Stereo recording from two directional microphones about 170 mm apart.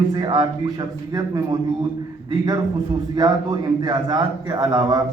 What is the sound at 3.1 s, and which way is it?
A man's voice, 20° right (ahead or behind).